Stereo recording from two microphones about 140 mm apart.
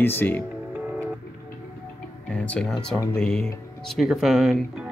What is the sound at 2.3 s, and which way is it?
Speech, 10° left (ahead or behind).